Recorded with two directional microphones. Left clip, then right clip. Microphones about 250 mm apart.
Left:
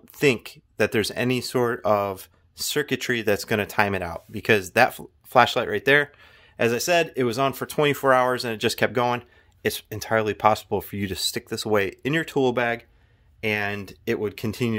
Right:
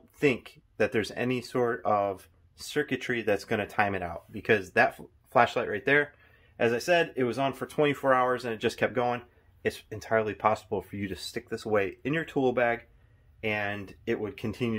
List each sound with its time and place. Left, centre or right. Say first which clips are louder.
0.2 s speech: left 5 dB; left